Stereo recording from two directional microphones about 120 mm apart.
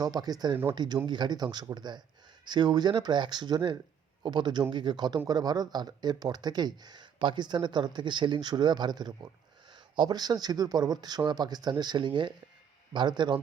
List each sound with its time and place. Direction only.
0.0 s speech: 30° right (ahead or behind)
0.5 s speech: 20° right (ahead or behind)
1.0 s a man's voice: 40° right (ahead or behind)